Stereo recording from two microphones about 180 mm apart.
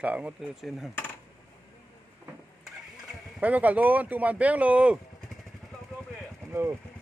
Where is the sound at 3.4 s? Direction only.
10° right (ahead or behind).